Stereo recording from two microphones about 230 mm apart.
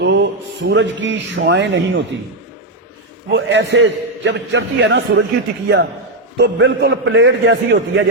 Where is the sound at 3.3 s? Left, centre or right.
Right.